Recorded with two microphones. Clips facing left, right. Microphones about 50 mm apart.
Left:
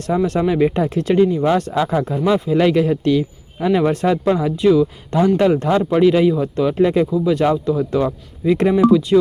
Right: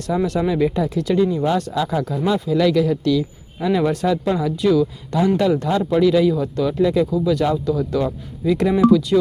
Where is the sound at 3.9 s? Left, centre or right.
Left.